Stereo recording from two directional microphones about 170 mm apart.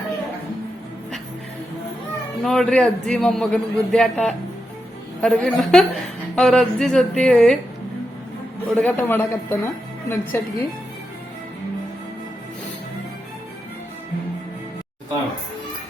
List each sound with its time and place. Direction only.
2.4 s a man's voice: 5° left (ahead or behind)
8.7 s a woman's voice: 10° left (ahead or behind)